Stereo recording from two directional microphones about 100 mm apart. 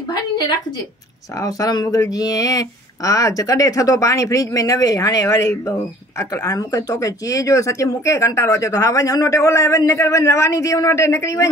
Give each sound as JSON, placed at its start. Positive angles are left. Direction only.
{"t": 1.4, "sound": "speech", "side_deg": 40}